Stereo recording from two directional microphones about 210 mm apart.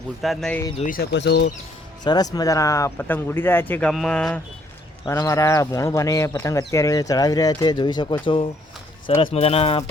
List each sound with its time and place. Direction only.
0.2 s speech: centre (ahead or behind)
0.8 s speech: 40° left (ahead or behind)
1.1 s speech: 55° left (ahead or behind)
2.0 s speech: 20° left (ahead or behind); by 4.4 s centre (ahead or behind)
5.0 s speech: 15° left (ahead or behind)